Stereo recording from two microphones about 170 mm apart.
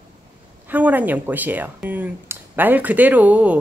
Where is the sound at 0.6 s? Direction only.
10° right (ahead or behind).